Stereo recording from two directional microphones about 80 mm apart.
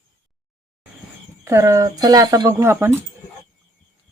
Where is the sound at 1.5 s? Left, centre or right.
Right.